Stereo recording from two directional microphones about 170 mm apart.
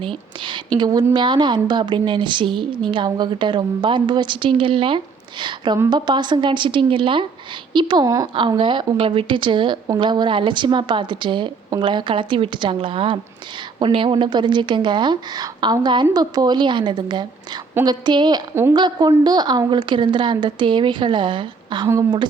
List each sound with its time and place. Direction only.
0.4 s a woman's voice: 25° right (ahead or behind)